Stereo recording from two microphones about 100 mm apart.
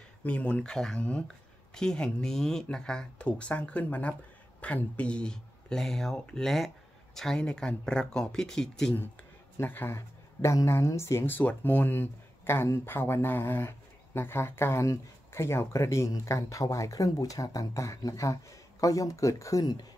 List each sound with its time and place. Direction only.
0.2 s speech: 10° left (ahead or behind)
9.6 s speech: 20° left (ahead or behind)
19.6 s speech: 45° left (ahead or behind)